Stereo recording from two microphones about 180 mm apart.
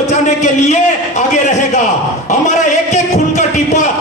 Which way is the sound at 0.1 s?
40° left (ahead or behind).